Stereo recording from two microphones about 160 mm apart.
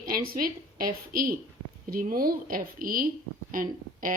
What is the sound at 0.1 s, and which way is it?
A woman's voice, 65° right (ahead or behind).